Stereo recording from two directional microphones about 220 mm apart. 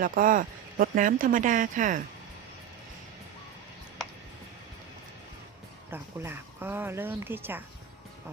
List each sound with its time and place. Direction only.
0.0 s speech: 40° right (ahead or behind)
5.9 s speech: 10° right (ahead or behind)